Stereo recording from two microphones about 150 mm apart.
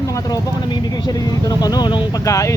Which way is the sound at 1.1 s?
25° left (ahead or behind).